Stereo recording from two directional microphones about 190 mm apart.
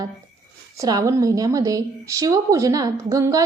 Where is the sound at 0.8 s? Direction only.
20° right (ahead or behind).